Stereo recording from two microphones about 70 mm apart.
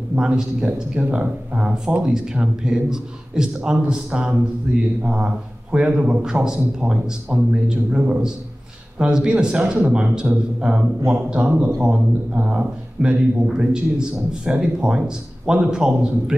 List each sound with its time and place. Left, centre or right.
0.1 s speech: centre